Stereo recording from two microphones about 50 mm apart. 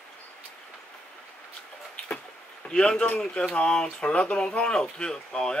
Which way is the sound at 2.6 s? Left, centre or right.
Centre.